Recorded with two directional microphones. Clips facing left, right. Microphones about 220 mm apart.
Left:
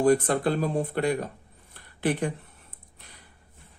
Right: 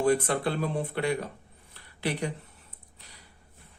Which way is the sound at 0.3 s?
45° left (ahead or behind).